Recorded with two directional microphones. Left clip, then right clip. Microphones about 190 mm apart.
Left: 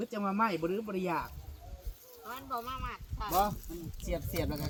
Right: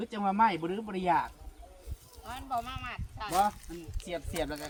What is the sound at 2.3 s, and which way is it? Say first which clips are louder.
Speech: right 3 dB; 50° right (ahead or behind).